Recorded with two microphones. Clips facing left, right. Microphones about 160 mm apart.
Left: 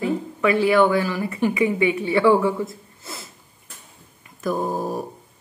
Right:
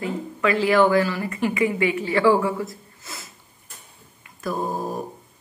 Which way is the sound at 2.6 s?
30° left (ahead or behind).